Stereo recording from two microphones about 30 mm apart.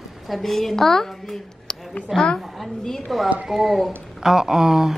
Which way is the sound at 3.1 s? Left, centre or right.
Centre.